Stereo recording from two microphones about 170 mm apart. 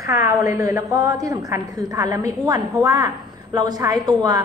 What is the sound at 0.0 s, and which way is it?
A woman's voice, 20° right (ahead or behind).